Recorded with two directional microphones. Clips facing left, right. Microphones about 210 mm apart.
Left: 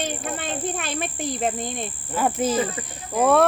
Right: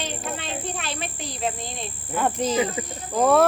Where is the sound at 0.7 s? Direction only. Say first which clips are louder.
Left 3 dB; 55° left (ahead or behind).